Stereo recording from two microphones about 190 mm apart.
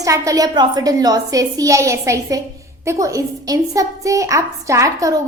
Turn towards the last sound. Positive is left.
turn(degrees=-15)  # may be behind; listen again after turning